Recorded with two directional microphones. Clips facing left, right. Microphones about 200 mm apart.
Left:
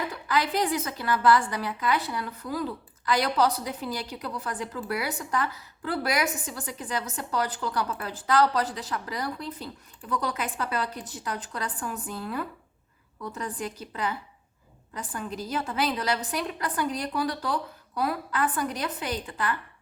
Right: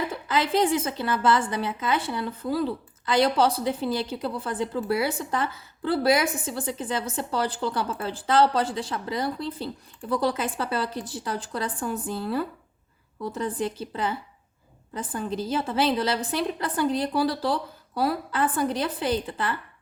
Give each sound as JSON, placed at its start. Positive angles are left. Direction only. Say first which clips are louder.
{"t": 0.1, "sound": "a woman's voice", "louder": "right 3 dB", "side_deg": -25}